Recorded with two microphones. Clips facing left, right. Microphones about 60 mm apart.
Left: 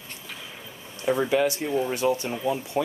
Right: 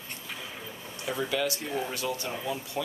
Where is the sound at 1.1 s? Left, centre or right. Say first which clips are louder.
Left 7 dB; left.